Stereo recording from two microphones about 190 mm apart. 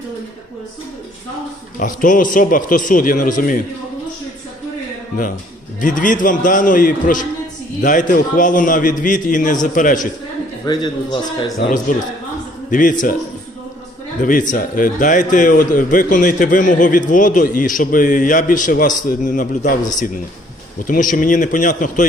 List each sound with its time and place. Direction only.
1.8 s a man's voice: 45° left (ahead or behind)
5.8 s a man's voice: 45° left (ahead or behind)
10.7 s a man's voice: 20° left (ahead or behind)
11.5 s a man's voice: 45° left (ahead or behind)
14.2 s a man's voice: 45° left (ahead or behind)